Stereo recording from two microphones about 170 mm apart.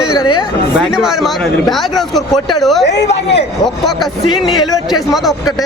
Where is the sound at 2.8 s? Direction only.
85° left.